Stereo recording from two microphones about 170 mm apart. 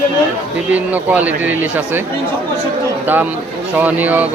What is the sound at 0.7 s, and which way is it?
Speech, 10° right (ahead or behind).